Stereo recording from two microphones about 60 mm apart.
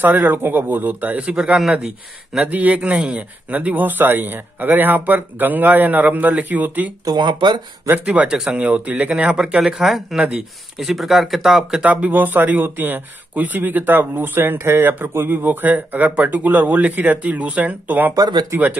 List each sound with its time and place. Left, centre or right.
0.0 s speech: right
1.2 s speech: centre
8.0 s speech: right
10.8 s speech: centre
11.8 s speech: right
18.1 s speech: right